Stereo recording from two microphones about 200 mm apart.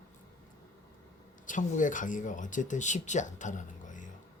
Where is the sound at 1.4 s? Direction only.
40° left (ahead or behind).